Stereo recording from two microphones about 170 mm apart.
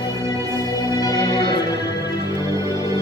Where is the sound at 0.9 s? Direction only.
20° left (ahead or behind).